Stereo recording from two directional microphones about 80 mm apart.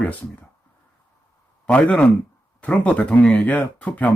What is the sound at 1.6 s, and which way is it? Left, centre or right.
Speech, centre.